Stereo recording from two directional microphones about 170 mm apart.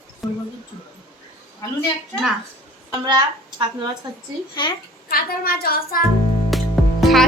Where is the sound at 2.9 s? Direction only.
20° right (ahead or behind).